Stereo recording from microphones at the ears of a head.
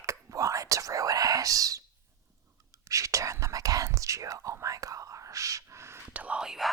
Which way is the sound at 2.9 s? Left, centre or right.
Right.